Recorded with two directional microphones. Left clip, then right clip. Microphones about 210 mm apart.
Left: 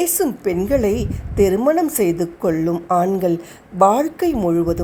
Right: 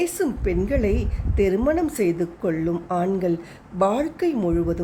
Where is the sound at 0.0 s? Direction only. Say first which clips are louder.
Left 4 dB; 15° left (ahead or behind).